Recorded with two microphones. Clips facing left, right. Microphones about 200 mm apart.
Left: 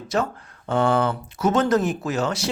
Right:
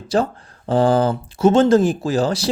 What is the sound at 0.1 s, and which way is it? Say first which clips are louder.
Speech: right 5 dB; 30° right (ahead or behind).